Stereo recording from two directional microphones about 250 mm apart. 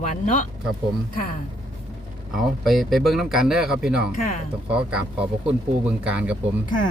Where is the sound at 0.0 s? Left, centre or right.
Left.